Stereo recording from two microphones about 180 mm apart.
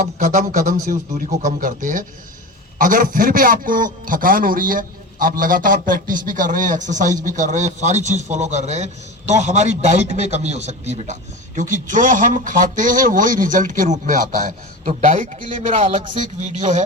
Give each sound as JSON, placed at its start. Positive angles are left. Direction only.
{"t": 0.0, "sound": "a man's voice", "side_deg": -45}